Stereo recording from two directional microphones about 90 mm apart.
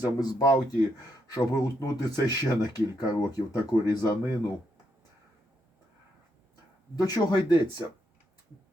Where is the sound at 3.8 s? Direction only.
45° left (ahead or behind).